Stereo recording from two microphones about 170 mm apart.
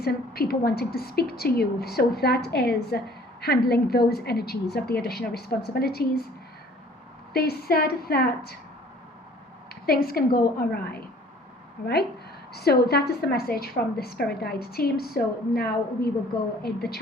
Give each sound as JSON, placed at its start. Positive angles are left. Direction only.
{"t": 0.0, "sound": "a woman's voice", "side_deg": 65}
{"t": 7.3, "sound": "a woman's voice", "side_deg": 65}
{"t": 9.8, "sound": "a woman's voice", "side_deg": 65}
{"t": 12.5, "sound": "a woman's voice", "side_deg": 70}